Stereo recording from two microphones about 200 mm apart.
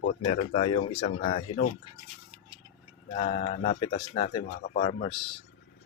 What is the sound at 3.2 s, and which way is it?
Speech, 35° left (ahead or behind).